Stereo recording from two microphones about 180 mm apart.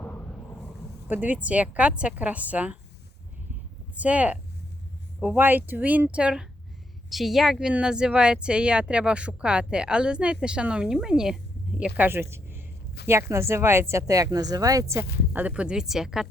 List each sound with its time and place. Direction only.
1.0 s speech: 10° right (ahead or behind)
3.9 s speech: 5° right (ahead or behind)